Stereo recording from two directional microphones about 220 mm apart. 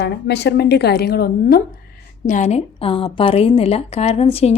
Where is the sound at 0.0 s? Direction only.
50° left (ahead or behind).